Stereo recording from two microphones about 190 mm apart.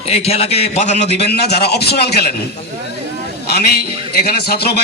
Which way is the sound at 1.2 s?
60° left (ahead or behind).